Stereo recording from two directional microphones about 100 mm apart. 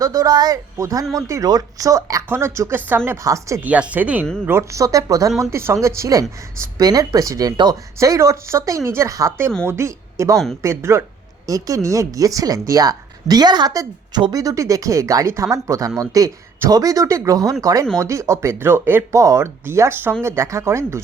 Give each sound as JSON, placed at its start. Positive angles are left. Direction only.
{"t": 0.0, "sound": "speech", "side_deg": -35}
{"t": 3.6, "sound": "speech", "side_deg": -15}
{"t": 4.4, "sound": "speech", "side_deg": -30}
{"t": 7.9, "sound": "a woman's voice", "side_deg": -35}
{"t": 14.3, "sound": "speech", "side_deg": -35}